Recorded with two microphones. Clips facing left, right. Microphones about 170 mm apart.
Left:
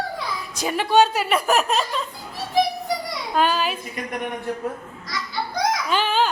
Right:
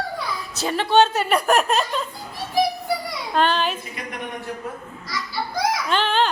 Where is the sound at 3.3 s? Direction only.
5° left (ahead or behind).